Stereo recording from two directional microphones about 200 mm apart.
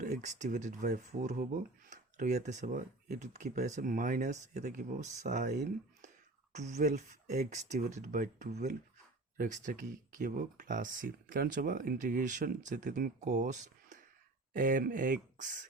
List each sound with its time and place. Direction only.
0.0 s speech: 35° right (ahead or behind)